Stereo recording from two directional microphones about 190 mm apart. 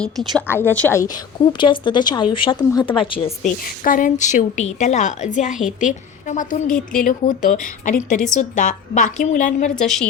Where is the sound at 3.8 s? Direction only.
45° left (ahead or behind).